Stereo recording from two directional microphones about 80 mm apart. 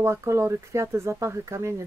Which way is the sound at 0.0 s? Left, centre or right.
Right.